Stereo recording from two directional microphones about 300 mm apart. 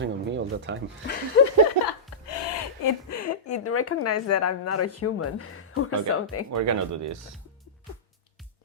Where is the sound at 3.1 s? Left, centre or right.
Left.